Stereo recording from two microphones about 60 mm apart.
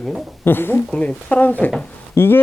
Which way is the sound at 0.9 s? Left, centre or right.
Left.